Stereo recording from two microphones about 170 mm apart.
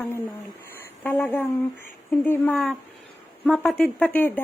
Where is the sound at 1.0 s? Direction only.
10° left (ahead or behind).